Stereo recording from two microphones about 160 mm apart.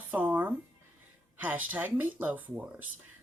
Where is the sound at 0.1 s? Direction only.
10° right (ahead or behind).